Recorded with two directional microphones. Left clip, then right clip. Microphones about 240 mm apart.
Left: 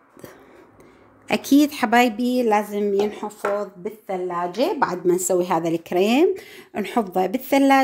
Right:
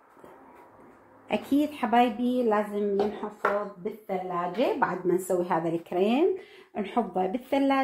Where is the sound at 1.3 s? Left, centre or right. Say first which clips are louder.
Left 8 dB; left.